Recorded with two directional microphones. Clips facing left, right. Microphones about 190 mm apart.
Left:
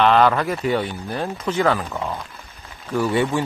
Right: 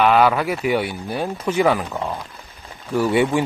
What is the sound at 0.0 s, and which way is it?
Speech, 5° right (ahead or behind).